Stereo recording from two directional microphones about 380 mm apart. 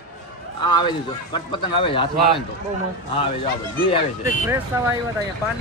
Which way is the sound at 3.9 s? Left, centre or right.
Centre.